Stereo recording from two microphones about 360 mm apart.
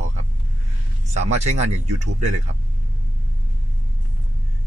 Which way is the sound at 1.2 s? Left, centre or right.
Centre.